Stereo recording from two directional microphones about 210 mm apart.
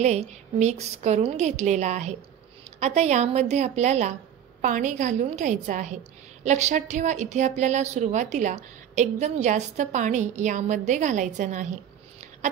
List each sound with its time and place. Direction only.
0.0 s a woman's voice: 30° right (ahead or behind)